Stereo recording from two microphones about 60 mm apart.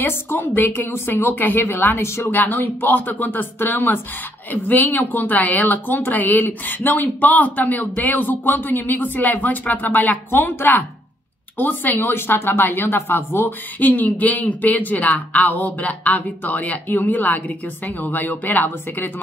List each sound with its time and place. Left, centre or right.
0.0 s speech: left
2.0 s speech: left
2.3 s speech: left
13.7 s speech: left